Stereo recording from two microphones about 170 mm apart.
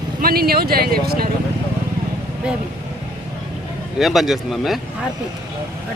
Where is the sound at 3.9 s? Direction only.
Centre (ahead or behind).